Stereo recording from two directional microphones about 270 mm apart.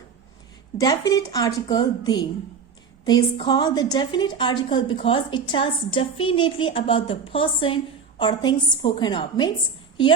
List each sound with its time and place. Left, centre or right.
0.8 s a woman's voice: centre